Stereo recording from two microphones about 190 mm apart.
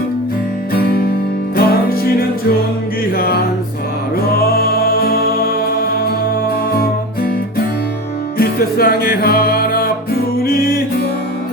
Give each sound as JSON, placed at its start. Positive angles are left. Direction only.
{"t": 0.7, "sound": "music", "side_deg": 55}
{"t": 3.2, "sound": "music", "side_deg": 55}
{"t": 8.4, "sound": "music", "side_deg": 55}